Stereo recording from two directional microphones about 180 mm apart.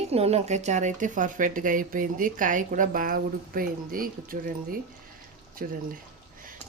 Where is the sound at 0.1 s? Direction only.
35° right (ahead or behind).